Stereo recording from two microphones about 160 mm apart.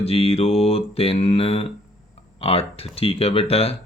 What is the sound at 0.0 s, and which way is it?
Speech, 35° left (ahead or behind).